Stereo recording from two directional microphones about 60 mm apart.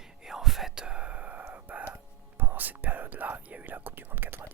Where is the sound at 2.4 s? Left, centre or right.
Right.